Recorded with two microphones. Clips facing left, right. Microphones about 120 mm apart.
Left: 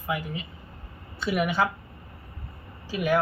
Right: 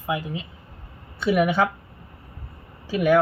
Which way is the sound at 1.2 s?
50° right (ahead or behind).